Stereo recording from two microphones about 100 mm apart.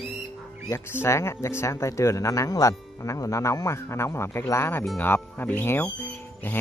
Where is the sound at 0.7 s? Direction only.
25° left (ahead or behind).